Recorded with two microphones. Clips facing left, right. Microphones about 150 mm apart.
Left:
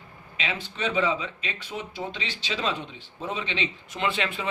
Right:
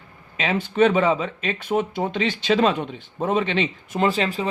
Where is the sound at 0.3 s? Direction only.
50° right (ahead or behind).